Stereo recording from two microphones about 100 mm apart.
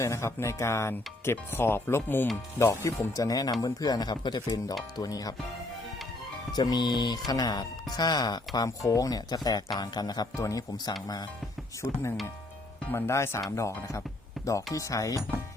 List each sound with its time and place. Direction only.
0.0 s speech: 30° left (ahead or behind)
6.5 s speech: 45° left (ahead or behind)